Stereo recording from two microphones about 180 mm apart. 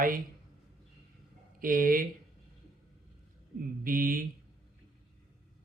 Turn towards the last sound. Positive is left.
turn(degrees=-50)  # may be behind; listen again after turning